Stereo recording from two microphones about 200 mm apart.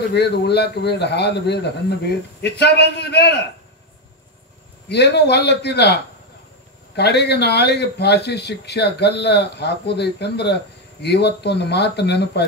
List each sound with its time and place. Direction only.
0.1 s speech: 55° left (ahead or behind)
4.8 s speech: 55° left (ahead or behind)
7.0 s speech: 55° left (ahead or behind)